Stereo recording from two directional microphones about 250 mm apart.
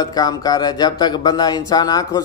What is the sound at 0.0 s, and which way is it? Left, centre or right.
Speech, centre.